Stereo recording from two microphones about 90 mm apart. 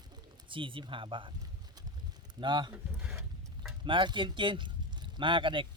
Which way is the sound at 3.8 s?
65° right (ahead or behind).